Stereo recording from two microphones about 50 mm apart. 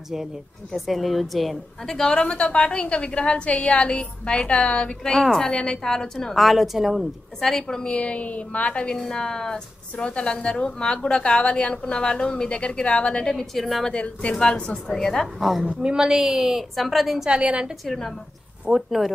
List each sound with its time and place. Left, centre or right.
0.7 s a woman's voice: centre
2.0 s a woman's voice: centre
5.1 s a woman's voice: centre
7.3 s a woman's voice: centre
8.9 s a woman's voice: centre
13.3 s a woman's voice: centre
13.9 s a woman's voice: left
15.3 s a woman's voice: centre
15.8 s a woman's voice: centre
17.3 s a woman's voice: right
17.8 s a woman's voice: centre
18.7 s a woman's voice: centre